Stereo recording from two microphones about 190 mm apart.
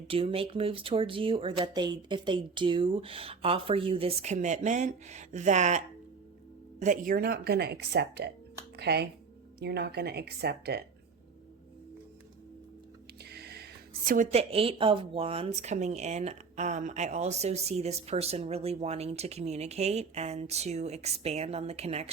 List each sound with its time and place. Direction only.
0.1 s speech: 30° right (ahead or behind); by 10.8 s 60° right (ahead or behind)
13.2 s a woman's voice: 55° right (ahead or behind); by 22.1 s 35° right (ahead or behind)